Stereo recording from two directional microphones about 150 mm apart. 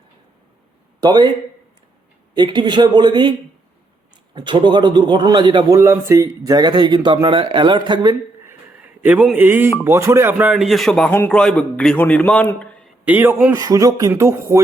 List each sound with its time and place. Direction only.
1.0 s a man's voice: 30° right (ahead or behind)
2.3 s speech: 30° right (ahead or behind)
4.4 s a man's voice: 30° right (ahead or behind)
5.7 s speech: 20° right (ahead or behind)
9.0 s speech: 10° right (ahead or behind); by 12.9 s 10° left (ahead or behind)
13.1 s speech: 10° right (ahead or behind)